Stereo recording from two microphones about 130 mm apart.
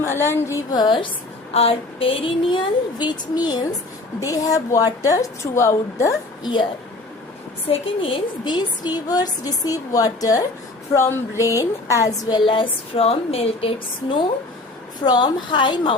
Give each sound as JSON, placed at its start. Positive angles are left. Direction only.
{"t": 0.0, "sound": "a woman's voice", "side_deg": 20}
{"t": 0.7, "sound": "speech", "side_deg": 35}
{"t": 1.5, "sound": "a woman's voice", "side_deg": 45}
{"t": 6.4, "sound": "speech", "side_deg": 35}
{"t": 7.7, "sound": "a woman's voice", "side_deg": 45}
{"t": 12.5, "sound": "speech", "side_deg": 40}
{"t": 15.0, "sound": "speech", "side_deg": 35}